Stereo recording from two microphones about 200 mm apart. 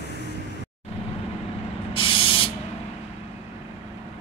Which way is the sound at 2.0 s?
25° left (ahead or behind).